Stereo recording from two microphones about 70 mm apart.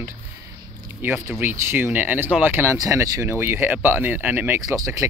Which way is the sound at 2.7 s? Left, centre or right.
Right.